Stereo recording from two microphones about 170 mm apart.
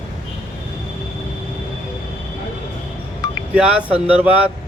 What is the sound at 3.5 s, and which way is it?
Speech, 10° right (ahead or behind).